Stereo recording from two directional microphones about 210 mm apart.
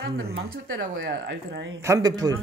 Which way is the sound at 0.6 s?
65° right (ahead or behind).